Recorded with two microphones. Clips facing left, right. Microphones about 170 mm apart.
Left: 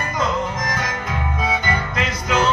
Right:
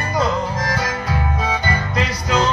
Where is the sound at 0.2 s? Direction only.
35° right (ahead or behind).